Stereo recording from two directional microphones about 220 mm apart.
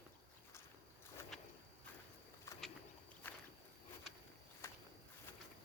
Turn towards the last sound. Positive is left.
turn(degrees=15)  # may be behind; listen again after turning